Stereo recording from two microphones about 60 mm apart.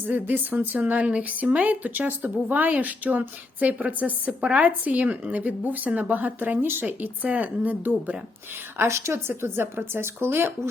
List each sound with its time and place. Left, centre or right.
0.1 s speech: right
8.8 s speech: right